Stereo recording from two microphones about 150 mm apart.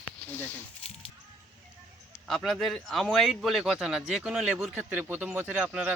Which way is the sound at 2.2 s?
Centre (ahead or behind).